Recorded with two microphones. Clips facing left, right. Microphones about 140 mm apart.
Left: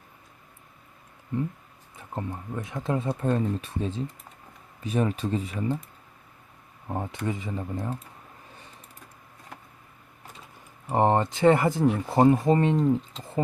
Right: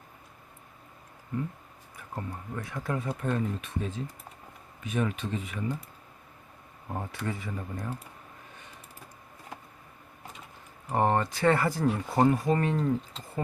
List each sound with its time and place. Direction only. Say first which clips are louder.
2.0 s speech: left 4 dB; 25° left (ahead or behind)
6.8 s speech: left 4 dB; 20° left (ahead or behind)
10.8 s speech: left 4 dB; 20° left (ahead or behind)